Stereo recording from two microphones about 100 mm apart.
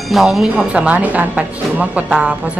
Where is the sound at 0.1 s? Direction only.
5° right (ahead or behind).